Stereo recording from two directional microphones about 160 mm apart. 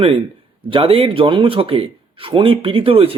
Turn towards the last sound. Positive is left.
turn(degrees=-35)  # may be behind; listen again after turning